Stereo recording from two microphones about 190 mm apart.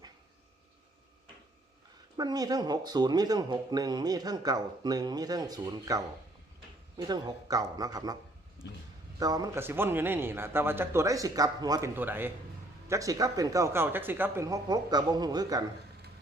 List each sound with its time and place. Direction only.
2.1 s speech: 20° right (ahead or behind)
9.1 s a man's voice: 20° right (ahead or behind)